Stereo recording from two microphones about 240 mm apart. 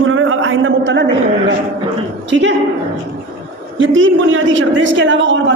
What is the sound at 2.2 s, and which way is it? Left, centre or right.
Speech, right.